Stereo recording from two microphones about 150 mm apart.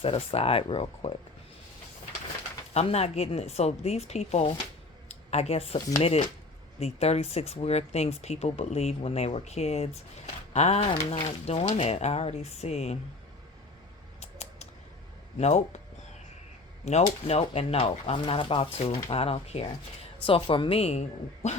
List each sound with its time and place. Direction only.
0.0 s speech: 40° left (ahead or behind)
2.7 s speech: 45° left (ahead or behind)
5.0 s a sound: 45° left (ahead or behind)
6.0 s speech: 40° left (ahead or behind)
14.2 s a sound: 45° left (ahead or behind)
15.4 s speech: 50° left (ahead or behind)
16.8 s speech: 45° left (ahead or behind)